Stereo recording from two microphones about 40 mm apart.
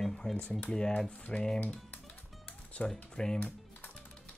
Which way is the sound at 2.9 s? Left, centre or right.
Centre.